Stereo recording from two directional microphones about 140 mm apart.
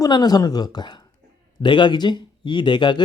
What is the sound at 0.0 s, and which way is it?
Speech, 30° left (ahead or behind).